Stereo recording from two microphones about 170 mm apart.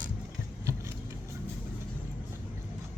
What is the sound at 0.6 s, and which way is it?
Vehicle, 15° right (ahead or behind).